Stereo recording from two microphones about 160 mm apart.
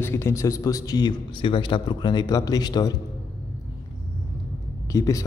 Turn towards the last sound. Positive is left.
turn(degrees=20)  # may be behind; listen again after turning